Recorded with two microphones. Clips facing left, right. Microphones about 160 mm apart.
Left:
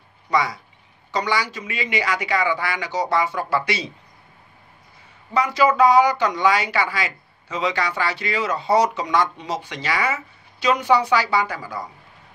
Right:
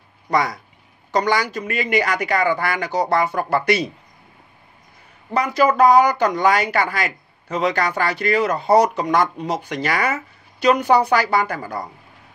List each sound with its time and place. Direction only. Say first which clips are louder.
0.3 s speech: right 2 dB; 50° right (ahead or behind)
5.3 s speech: right 1 dB; 55° right (ahead or behind)